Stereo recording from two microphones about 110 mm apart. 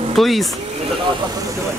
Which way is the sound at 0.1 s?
Centre (ahead or behind).